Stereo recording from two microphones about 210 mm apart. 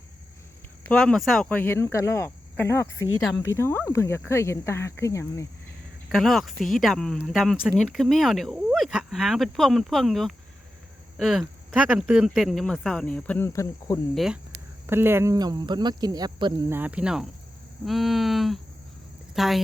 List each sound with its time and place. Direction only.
0.9 s speech: 5° left (ahead or behind)
6.1 s speech: centre (ahead or behind)
14.8 s a woman's voice: 10° right (ahead or behind)